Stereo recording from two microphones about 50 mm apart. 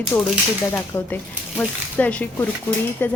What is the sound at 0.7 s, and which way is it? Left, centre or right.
Speech, left.